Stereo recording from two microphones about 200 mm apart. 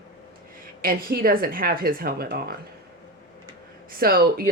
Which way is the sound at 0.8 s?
50° right (ahead or behind).